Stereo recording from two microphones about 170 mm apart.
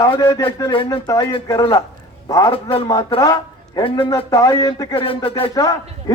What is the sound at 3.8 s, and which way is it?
Speech, 30° left (ahead or behind).